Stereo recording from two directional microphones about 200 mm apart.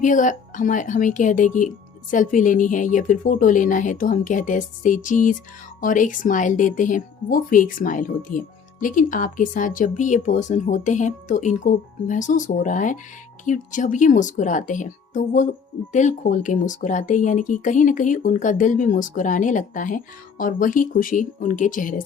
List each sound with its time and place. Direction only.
0.0 s speech: 40° left (ahead or behind)